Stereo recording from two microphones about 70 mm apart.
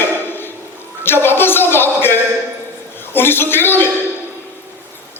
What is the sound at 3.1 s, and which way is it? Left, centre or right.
Speech, left.